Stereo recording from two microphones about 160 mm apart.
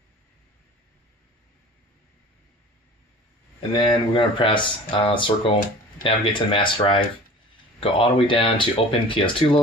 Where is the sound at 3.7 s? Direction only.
30° left (ahead or behind).